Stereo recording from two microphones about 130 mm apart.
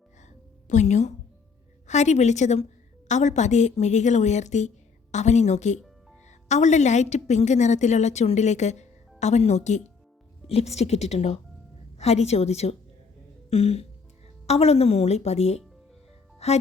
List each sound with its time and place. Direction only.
0.7 s a woman's voice: 65° left (ahead or behind)